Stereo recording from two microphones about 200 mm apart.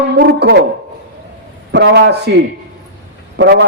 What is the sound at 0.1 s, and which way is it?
Speech, 55° right (ahead or behind).